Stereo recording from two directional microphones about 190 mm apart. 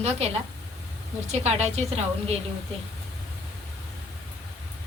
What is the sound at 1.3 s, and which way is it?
Speech, 35° right (ahead or behind).